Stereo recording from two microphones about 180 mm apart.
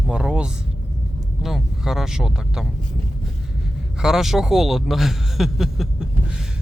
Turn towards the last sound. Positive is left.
turn(degrees=-5)  # may be behind; listen again after turning